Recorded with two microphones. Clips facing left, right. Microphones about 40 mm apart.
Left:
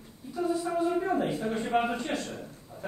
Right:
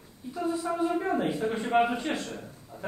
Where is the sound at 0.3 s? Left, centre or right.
Centre.